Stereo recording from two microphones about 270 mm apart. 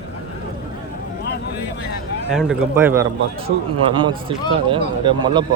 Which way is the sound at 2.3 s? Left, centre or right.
Centre.